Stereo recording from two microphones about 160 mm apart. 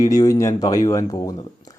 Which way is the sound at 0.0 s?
25° left (ahead or behind).